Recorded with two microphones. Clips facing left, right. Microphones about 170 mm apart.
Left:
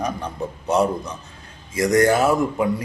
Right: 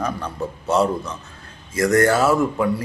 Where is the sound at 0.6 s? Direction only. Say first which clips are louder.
Even; 15° left (ahead or behind).